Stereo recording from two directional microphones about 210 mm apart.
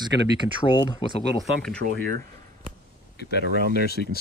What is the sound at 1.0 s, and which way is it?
Speech, 25° left (ahead or behind).